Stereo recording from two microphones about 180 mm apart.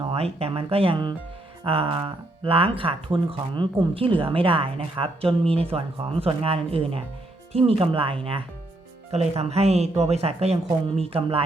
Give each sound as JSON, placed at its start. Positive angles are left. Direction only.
{"t": 0.0, "sound": "speech", "side_deg": -30}